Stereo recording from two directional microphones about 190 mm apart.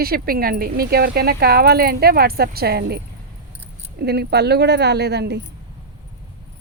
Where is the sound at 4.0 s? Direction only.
60° right (ahead or behind).